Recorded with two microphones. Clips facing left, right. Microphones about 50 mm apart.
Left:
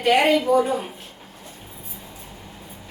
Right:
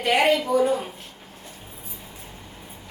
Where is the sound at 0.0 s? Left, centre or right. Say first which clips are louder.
Left 2 dB; centre.